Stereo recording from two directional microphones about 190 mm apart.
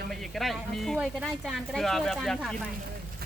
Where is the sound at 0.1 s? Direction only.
Centre (ahead or behind).